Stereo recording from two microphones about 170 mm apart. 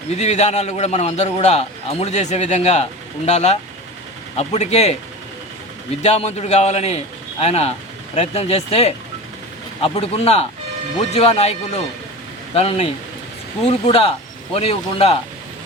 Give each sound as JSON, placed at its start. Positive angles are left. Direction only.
{"t": 0.1, "sound": "a man's voice", "side_deg": 40}
{"t": 6.0, "sound": "a man's voice", "side_deg": 40}
{"t": 12.5, "sound": "a man's voice", "side_deg": 35}